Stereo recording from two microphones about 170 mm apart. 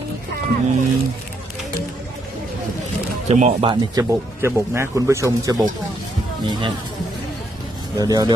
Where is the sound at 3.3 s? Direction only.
40° right (ahead or behind).